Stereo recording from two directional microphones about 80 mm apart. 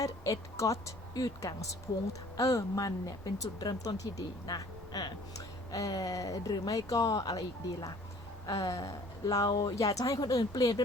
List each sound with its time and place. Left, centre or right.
0.0 s speech: left